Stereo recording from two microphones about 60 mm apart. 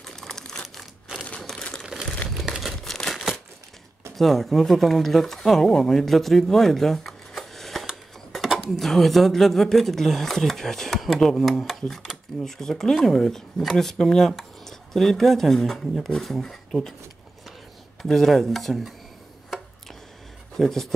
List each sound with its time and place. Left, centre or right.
0.0 s crumpling: centre
1.1 s typewriter: centre
1.8 s a sound: centre
2.3 s crumpling: centre
4.2 s speech: centre
7.8 s a sound: centre
8.5 s speech: centre
18.0 s speech: centre
20.5 s speech: centre